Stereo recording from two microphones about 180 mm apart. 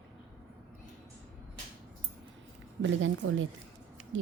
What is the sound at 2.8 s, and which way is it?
Speech, 90° right.